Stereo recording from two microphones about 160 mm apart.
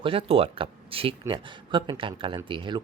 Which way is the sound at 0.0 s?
35° right (ahead or behind).